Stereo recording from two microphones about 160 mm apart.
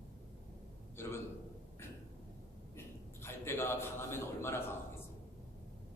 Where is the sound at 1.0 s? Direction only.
15° left (ahead or behind).